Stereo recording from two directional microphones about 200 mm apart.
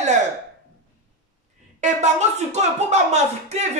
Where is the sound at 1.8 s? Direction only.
35° right (ahead or behind).